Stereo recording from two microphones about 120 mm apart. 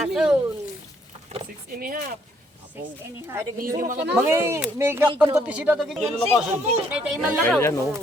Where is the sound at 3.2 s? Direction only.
20° right (ahead or behind).